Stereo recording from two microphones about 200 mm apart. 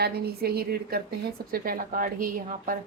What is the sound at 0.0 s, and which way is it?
Speech, 50° right (ahead or behind).